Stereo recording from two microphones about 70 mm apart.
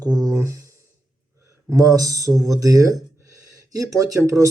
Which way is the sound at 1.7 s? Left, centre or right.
Right.